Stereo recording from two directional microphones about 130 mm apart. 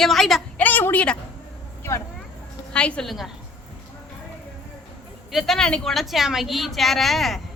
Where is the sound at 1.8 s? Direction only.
20° left (ahead or behind).